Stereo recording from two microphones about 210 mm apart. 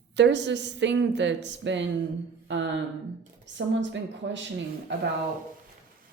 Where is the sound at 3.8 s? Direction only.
60° right (ahead or behind).